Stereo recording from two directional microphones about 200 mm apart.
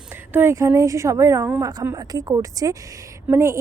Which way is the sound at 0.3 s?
15° right (ahead or behind).